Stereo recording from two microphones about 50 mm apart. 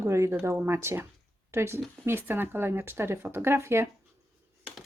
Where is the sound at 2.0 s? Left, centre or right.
Right.